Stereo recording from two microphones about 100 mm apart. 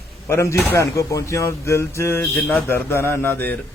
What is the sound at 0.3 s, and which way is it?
A man's voice, 25° left (ahead or behind).